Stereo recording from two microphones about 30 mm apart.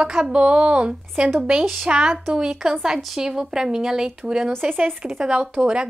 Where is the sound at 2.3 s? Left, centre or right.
Right.